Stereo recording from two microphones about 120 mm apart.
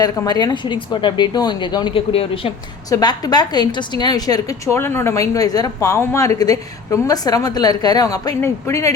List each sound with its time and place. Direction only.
0.0 s a woman's voice: 35° left (ahead or behind); by 2.5 s 50° left (ahead or behind)
2.9 s a woman's voice: 35° left (ahead or behind)